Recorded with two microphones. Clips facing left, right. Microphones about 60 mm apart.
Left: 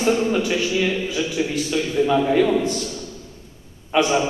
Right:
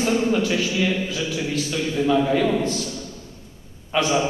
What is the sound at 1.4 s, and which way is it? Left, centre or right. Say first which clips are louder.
Speech: left 6 dB; left.